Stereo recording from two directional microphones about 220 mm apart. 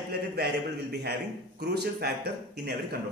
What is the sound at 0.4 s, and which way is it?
A man's voice, 50° right (ahead or behind).